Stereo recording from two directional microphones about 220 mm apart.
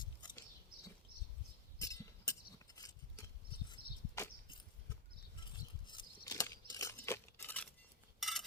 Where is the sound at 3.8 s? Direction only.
45° right (ahead or behind).